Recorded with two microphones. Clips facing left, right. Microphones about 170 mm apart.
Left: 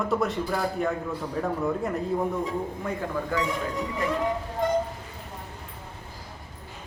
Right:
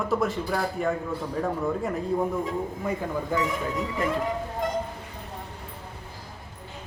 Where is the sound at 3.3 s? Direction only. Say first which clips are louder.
Right 2 dB; 20° right (ahead or behind).